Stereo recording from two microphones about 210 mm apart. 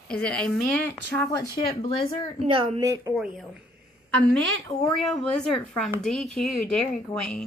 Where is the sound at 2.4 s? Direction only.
25° right (ahead or behind).